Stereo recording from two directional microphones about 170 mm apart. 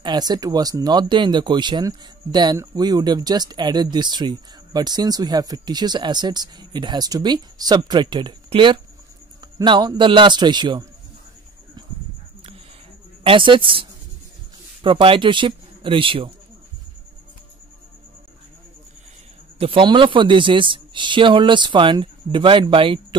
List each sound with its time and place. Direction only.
0.0 s speech: 25° right (ahead or behind)
13.2 s speech: 30° right (ahead or behind)
19.6 s speech: 30° right (ahead or behind)